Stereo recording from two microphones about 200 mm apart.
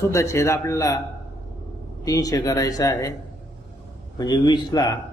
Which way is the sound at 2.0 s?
20° left (ahead or behind).